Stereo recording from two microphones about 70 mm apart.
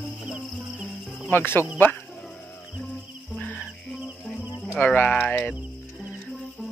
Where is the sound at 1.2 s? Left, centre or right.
Left.